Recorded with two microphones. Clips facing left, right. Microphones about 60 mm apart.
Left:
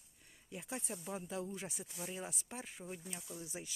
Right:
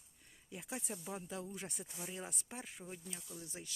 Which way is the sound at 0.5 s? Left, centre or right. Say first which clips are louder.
Left 1 dB; centre.